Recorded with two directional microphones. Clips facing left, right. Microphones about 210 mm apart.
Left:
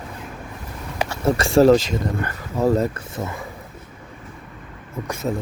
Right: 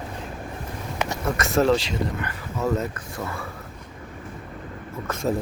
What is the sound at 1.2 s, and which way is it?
Speech, 30° left (ahead or behind).